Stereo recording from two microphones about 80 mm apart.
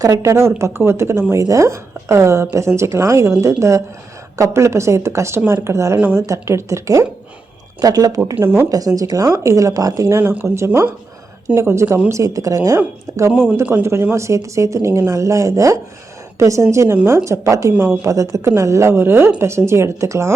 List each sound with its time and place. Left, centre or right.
0.0 s a woman's voice: right
10.2 s speech: right
10.4 s a woman's voice: right
10.7 s speech: right
11.4 s a woman's voice: right
13.3 s a woman's voice: right